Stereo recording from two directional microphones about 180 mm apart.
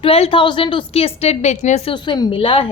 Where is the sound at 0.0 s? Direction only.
30° left (ahead or behind).